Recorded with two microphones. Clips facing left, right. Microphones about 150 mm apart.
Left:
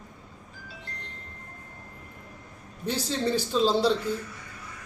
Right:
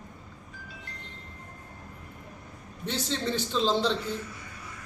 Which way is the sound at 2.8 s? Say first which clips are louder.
Left 3 dB; 10° left (ahead or behind).